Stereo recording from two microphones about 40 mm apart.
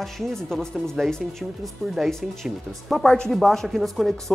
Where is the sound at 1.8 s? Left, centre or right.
Centre.